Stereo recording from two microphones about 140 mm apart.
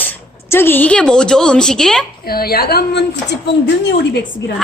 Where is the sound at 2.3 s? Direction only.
90° left.